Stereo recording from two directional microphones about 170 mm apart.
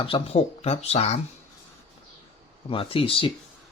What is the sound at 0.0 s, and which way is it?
Speech, 35° left (ahead or behind).